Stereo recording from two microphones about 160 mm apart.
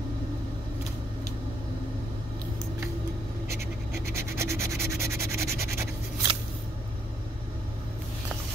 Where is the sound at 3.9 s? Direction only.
15° right (ahead or behind).